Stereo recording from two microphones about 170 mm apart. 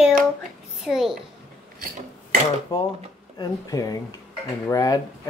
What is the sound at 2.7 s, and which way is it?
Speech, 20° left (ahead or behind).